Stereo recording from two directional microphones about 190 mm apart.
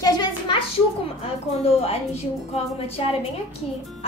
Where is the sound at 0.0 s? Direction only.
20° left (ahead or behind).